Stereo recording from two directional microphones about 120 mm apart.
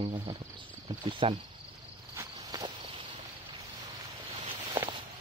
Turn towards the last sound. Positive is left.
turn(degrees=-45)  # may be behind; listen again after turning